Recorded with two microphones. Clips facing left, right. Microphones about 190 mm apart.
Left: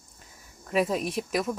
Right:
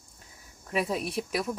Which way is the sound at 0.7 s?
5° right (ahead or behind).